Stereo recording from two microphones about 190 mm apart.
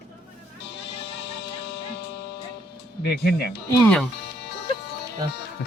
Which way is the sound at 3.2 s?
55° left (ahead or behind).